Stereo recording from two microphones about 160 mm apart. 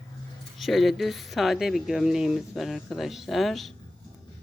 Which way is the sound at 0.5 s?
Centre (ahead or behind).